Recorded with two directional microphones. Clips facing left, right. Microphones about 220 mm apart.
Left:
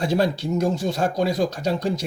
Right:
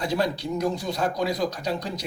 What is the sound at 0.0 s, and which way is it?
Speech, 25° left (ahead or behind).